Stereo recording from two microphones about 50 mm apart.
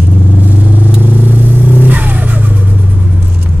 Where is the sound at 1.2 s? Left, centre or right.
Right.